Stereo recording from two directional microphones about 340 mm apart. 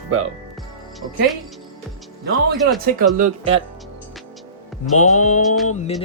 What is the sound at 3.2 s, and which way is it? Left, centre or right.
Speech, centre.